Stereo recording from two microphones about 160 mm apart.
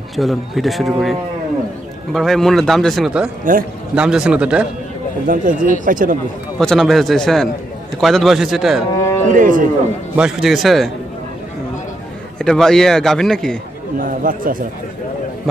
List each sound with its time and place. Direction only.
0.1 s a man's voice: centre (ahead or behind)
2.1 s a man's voice: centre (ahead or behind)
3.5 s speech: 55° right (ahead or behind)
3.9 s a man's voice: 5° right (ahead or behind)
5.2 s speech: 55° right (ahead or behind)
6.6 s a man's voice: 5° left (ahead or behind)
9.3 s speech: 55° right (ahead or behind)
10.1 s a man's voice: 5° right (ahead or behind)
12.4 s a man's voice: 5° left (ahead or behind)
13.9 s speech: 60° right (ahead or behind)